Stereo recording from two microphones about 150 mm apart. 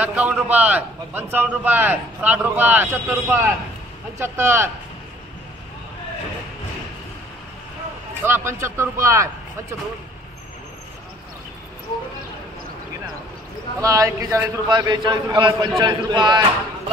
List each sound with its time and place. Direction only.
0.0 s a man's voice: 10° right (ahead or behind)
8.2 s a man's voice: 15° right (ahead or behind)
13.7 s a man's voice: 20° right (ahead or behind)